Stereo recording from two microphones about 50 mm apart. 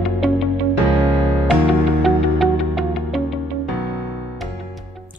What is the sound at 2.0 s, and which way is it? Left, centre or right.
Music, centre.